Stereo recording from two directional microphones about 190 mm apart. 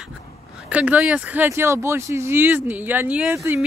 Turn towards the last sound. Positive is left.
turn(degrees=-10)  # may be behind; listen again after turning